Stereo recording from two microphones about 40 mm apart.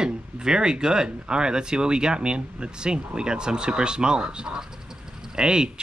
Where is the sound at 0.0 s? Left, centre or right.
Centre.